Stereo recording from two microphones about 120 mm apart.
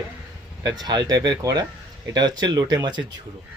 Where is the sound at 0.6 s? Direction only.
35° right (ahead or behind).